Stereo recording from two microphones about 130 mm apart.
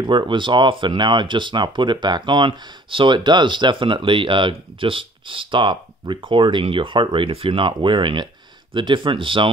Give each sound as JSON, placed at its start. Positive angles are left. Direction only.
{"t": 0.0, "sound": "speech", "side_deg": -35}